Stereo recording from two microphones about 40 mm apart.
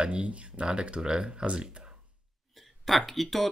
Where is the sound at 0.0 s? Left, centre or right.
Right.